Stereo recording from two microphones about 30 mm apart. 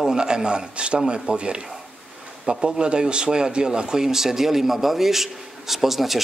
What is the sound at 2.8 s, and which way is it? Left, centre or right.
Speech, right.